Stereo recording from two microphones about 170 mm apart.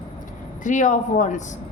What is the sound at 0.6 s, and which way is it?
Speech, 50° left (ahead or behind).